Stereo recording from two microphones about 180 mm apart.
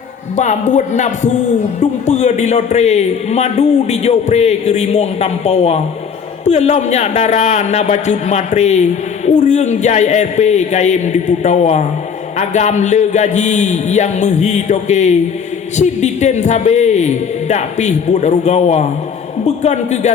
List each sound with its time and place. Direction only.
0.3 s a man's voice: 40° left (ahead or behind)